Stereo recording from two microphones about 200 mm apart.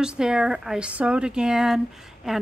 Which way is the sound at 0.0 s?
5° right (ahead or behind).